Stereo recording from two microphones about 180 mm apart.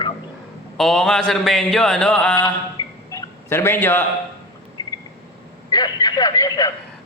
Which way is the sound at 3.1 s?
15° left (ahead or behind).